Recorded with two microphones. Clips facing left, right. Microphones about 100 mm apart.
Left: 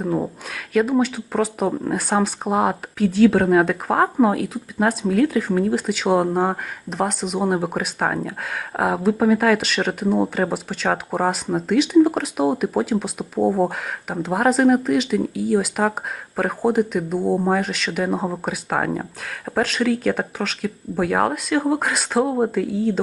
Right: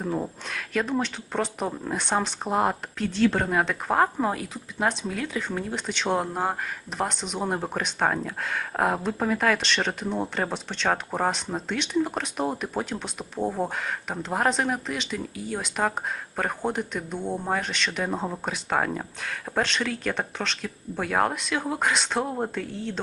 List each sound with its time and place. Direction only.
0.0 s speech: 10° left (ahead or behind)